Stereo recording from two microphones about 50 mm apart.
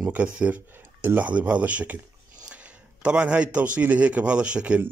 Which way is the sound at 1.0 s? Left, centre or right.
Right.